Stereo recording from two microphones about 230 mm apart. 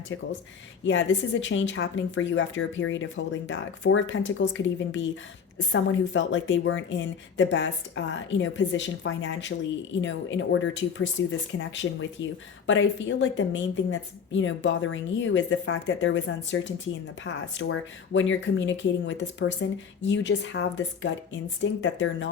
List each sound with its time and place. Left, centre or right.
0.9 s a woman's voice: left